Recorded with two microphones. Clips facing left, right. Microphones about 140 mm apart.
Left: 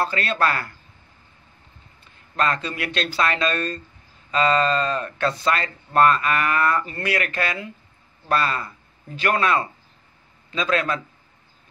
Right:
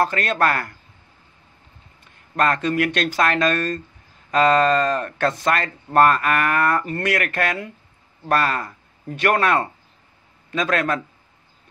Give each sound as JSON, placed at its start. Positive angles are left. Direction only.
{"t": 0.0, "sound": "speech", "side_deg": -50}
{"t": 2.3, "sound": "speech", "side_deg": -50}